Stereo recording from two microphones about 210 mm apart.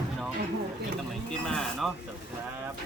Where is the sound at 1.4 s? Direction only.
Centre (ahead or behind).